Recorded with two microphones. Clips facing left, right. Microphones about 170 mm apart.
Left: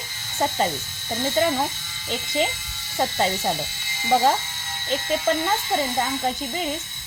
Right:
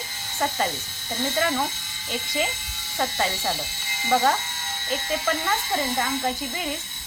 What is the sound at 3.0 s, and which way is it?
A woman's voice, 25° left (ahead or behind).